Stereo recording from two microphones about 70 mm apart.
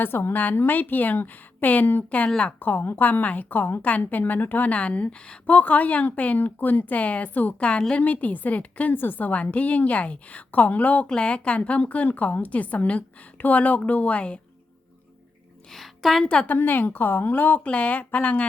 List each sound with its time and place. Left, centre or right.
0.0 s a woman's voice: left; by 2.6 s centre
2.6 s a woman's voice: left
15.7 s a woman's voice: centre
16.2 s a woman's voice: centre
16.5 s a woman's voice: left